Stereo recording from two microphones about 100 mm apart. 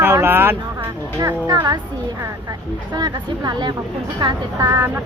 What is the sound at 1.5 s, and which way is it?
Speech, 40° right (ahead or behind).